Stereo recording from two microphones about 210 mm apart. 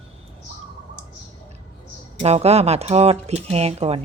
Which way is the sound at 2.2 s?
30° right (ahead or behind).